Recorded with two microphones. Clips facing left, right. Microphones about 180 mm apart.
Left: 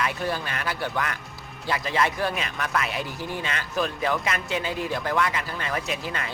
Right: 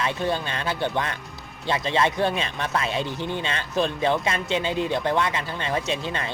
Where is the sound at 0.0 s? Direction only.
25° right (ahead or behind).